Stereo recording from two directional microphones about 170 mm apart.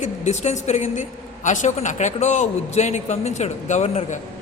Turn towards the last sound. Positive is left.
turn(degrees=40)  # may be behind; listen again after turning